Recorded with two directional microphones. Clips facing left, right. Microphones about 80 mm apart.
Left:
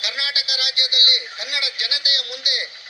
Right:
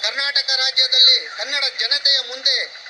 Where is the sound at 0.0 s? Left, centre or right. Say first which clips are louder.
Right 4 dB; right.